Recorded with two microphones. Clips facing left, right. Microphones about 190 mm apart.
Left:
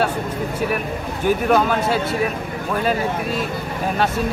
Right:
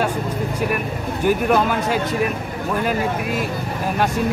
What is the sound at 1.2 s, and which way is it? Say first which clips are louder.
Speech: even; 10° right (ahead or behind).